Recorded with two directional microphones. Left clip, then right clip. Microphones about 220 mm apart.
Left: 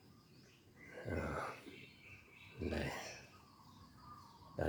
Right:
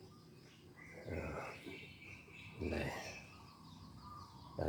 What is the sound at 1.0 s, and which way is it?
Dog, 30° left (ahead or behind).